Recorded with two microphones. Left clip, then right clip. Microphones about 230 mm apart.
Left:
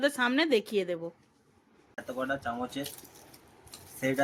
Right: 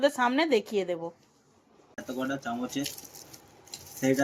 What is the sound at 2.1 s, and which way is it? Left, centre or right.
Speech, left.